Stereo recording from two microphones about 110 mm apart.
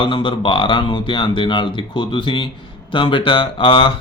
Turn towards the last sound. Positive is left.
turn(degrees=50)  # may be behind; listen again after turning